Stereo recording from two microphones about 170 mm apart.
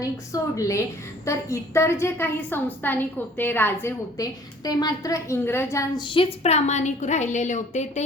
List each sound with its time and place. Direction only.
0.3 s a woman's voice: 20° left (ahead or behind)
6.0 s a woman's voice: 30° left (ahead or behind)